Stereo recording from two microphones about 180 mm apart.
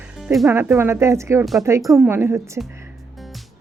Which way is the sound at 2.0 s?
15° right (ahead or behind).